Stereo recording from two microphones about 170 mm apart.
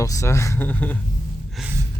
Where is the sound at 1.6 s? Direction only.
Centre (ahead or behind).